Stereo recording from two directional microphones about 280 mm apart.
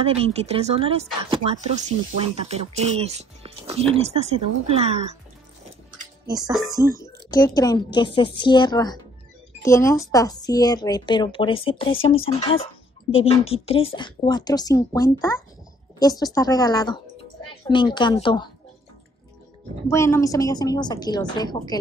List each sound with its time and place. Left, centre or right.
0.0 s speech: right
6.2 s speech: centre
7.3 s speech: centre
19.9 s speech: centre